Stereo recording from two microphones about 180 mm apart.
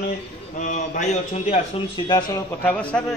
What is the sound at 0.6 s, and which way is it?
A man's voice, 45° left (ahead or behind).